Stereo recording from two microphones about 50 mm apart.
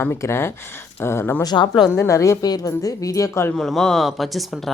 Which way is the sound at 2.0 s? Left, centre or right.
Left.